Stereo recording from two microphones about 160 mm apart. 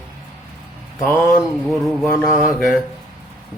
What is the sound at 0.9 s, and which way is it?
Speech, 15° left (ahead or behind).